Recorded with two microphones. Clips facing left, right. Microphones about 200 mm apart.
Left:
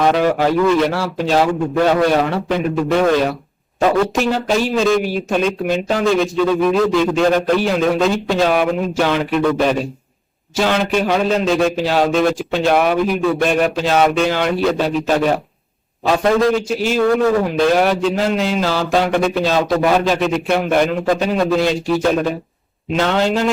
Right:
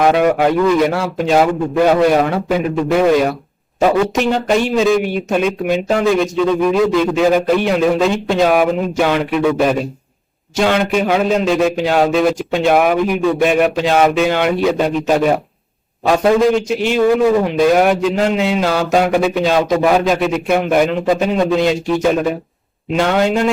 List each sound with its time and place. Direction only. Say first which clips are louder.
0.0 s a man's voice: right 2 dB; 5° right (ahead or behind)
19.5 s a man's voice: right 2 dB; 10° right (ahead or behind)
20.1 s a man's voice: right 2 dB; centre (ahead or behind)